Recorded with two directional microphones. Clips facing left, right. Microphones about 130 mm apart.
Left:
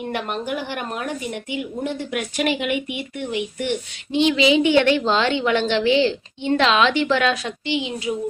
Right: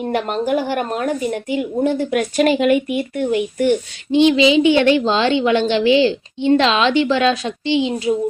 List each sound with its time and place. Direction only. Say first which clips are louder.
0.1 s a woman's voice: right 8 dB; 40° right (ahead or behind)
4.1 s a woman's voice: right 5 dB; 25° right (ahead or behind)